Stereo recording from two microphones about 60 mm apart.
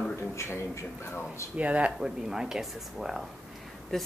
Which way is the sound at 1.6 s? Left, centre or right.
Right.